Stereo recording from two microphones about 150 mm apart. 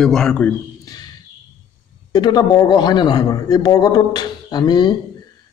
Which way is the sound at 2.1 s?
25° left (ahead or behind).